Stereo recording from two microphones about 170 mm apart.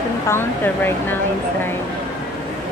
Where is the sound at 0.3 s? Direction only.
15° left (ahead or behind).